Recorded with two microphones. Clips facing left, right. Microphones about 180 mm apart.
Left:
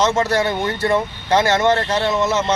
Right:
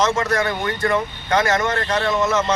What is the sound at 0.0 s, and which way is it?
Speech, 30° left (ahead or behind).